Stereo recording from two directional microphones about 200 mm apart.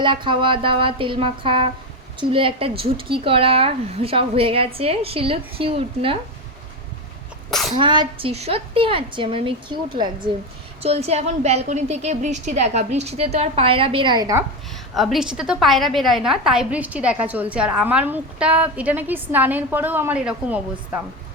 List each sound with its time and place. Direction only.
0.0 s speech: 25° right (ahead or behind)
7.8 s a woman's voice: 25° right (ahead or behind)
14.9 s a woman's voice: centre (ahead or behind)